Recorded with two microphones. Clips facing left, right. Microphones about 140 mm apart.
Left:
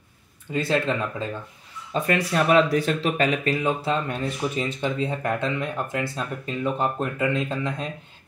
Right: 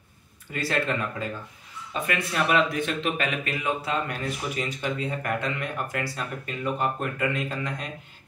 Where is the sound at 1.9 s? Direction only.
35° left (ahead or behind).